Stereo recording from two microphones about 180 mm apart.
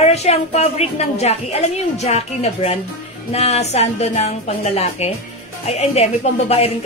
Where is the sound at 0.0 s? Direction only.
35° left (ahead or behind).